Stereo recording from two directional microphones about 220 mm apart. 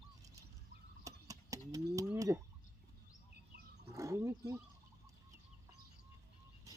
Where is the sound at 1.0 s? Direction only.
15° right (ahead or behind).